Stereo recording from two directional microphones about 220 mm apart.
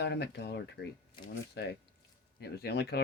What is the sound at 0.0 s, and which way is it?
Speech, 50° left (ahead or behind).